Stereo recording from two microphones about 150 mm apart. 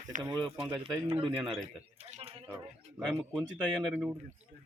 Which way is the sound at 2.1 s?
40° right (ahead or behind).